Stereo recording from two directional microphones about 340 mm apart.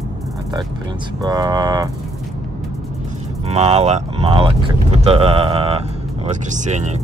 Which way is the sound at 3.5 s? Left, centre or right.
Centre.